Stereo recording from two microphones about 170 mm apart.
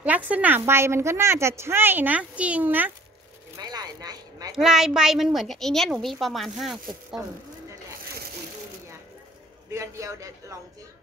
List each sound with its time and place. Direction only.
0.0 s a woman's voice: 10° right (ahead or behind)
3.5 s a sound: 25° right (ahead or behind)
4.6 s a woman's voice: 5° right (ahead or behind)
9.7 s a woman's voice: 15° right (ahead or behind)